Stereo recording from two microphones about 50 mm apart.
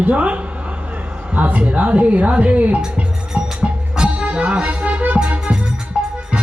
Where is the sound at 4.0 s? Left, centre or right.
Right.